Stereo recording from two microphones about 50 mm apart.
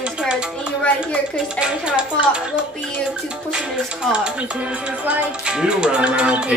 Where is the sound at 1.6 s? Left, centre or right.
Right.